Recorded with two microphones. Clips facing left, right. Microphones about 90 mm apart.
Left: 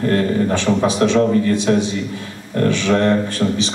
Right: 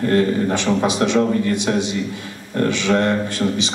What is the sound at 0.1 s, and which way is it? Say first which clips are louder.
A man's voice: even; 20° right (ahead or behind).